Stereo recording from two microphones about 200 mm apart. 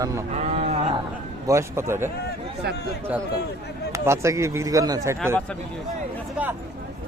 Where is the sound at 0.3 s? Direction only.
35° right (ahead or behind).